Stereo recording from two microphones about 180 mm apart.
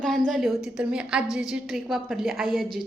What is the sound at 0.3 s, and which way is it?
A woman's voice, centre (ahead or behind).